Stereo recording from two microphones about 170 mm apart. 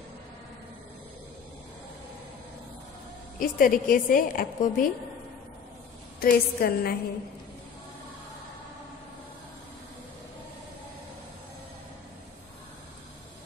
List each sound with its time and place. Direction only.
3.3 s a woman's voice: 55° left (ahead or behind)
6.1 s a woman's voice: 60° left (ahead or behind)